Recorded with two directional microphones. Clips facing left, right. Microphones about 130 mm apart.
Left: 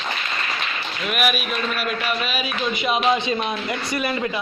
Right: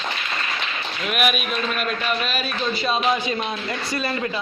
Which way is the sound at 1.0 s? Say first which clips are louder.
Even; centre (ahead or behind).